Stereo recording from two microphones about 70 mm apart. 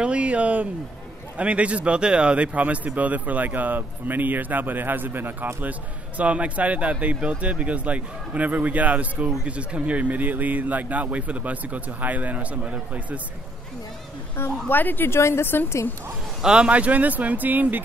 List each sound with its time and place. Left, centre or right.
0.0 s a man's voice: centre
14.3 s a woman's voice: left
16.3 s a man's voice: centre